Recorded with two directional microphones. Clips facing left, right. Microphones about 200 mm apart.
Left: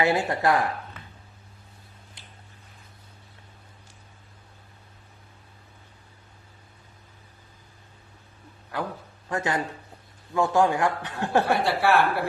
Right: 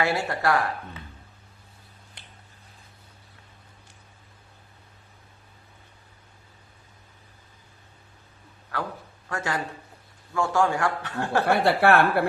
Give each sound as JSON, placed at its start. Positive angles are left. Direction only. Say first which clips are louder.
{"t": 0.0, "sound": "speech", "louder": "left 2 dB", "side_deg": 20}
{"t": 2.2, "sound": "a sound", "louder": "right 2 dB", "side_deg": -60}
{"t": 9.3, "sound": "a man's voice", "louder": "left 3 dB", "side_deg": 20}
{"t": 11.4, "sound": "a woman's voice", "louder": "right 3 dB", "side_deg": -60}